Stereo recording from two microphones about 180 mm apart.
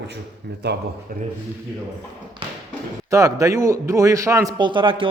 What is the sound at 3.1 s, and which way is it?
A man's voice, 20° right (ahead or behind).